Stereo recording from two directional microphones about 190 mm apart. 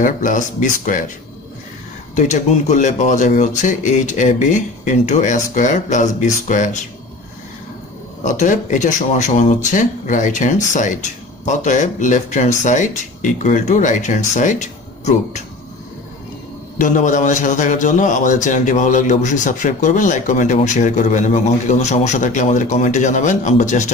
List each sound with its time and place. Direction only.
0.0 s speech: 40° left (ahead or behind)
2.1 s a man's voice: 40° left (ahead or behind)
8.2 s a man's voice: 40° left (ahead or behind)
16.7 s a man's voice: 45° left (ahead or behind)